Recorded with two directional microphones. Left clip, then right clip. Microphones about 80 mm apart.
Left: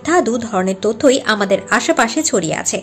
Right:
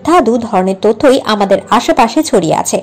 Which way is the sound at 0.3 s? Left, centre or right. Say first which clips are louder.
Right 6 dB; right.